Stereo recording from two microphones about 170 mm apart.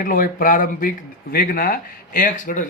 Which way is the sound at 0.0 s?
55° left (ahead or behind).